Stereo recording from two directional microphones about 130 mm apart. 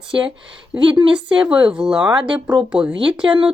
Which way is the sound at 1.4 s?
10° right (ahead or behind).